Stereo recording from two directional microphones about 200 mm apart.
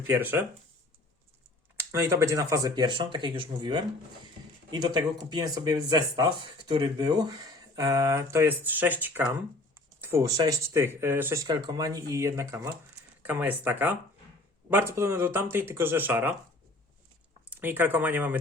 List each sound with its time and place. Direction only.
0.1 s speech: 10° right (ahead or behind)
1.7 s speech: 10° right (ahead or behind)
11.4 s speech: 20° right (ahead or behind)
17.5 s speech: 10° right (ahead or behind)